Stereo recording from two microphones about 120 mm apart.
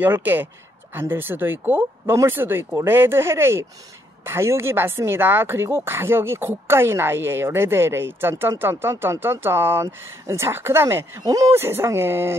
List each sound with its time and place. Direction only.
0.0 s a woman's voice: 15° right (ahead or behind)